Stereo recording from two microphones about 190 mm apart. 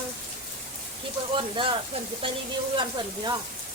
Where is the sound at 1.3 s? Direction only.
25° right (ahead or behind).